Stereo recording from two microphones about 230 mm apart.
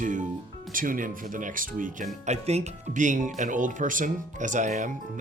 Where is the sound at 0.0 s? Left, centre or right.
Right.